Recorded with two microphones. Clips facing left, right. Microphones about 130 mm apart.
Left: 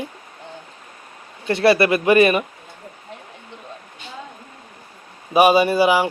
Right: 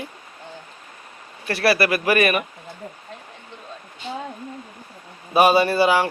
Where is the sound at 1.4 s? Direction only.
25° left (ahead or behind).